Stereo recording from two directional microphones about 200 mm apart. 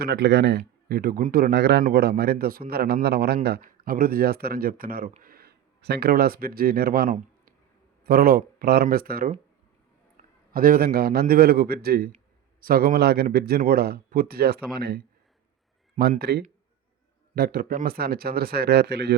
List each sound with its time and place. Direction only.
0.0 s a man's voice: 55° right (ahead or behind)